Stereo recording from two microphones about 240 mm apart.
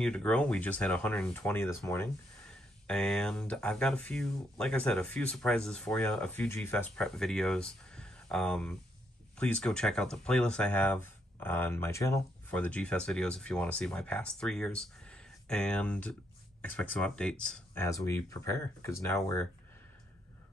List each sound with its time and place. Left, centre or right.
0.0 s speech: centre